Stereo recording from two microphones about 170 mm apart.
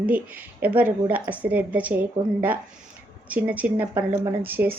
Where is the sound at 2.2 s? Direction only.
20° right (ahead or behind).